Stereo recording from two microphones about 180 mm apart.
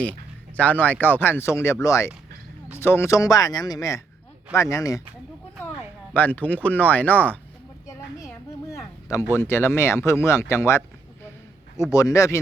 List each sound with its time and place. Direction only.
0.5 s speech: 10° left (ahead or behind)
6.1 s speech: 10° left (ahead or behind)
8.7 s a sound: 15° left (ahead or behind)
9.3 s speech: 15° left (ahead or behind)